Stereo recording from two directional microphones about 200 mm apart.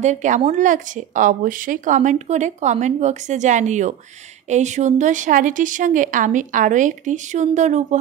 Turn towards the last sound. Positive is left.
turn(degrees=-35)  # may be behind; listen again after turning